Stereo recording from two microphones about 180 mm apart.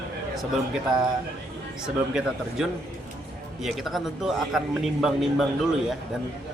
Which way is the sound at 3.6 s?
Centre (ahead or behind).